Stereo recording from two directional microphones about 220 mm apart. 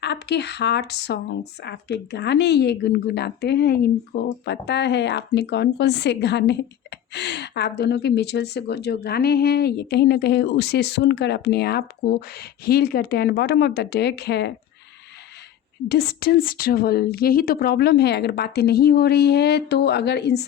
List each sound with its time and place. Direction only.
0.0 s speech: 50° left (ahead or behind)
15.9 s speech: 45° left (ahead or behind)